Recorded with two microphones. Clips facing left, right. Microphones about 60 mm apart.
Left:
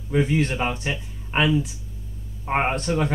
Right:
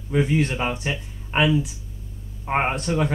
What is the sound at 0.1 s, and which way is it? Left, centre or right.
Speech, centre.